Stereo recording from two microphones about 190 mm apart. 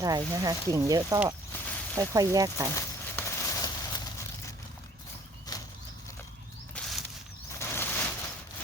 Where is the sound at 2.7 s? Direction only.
15° left (ahead or behind).